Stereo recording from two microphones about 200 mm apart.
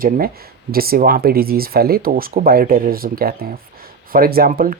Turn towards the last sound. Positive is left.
turn(degrees=-45)  # may be behind; listen again after turning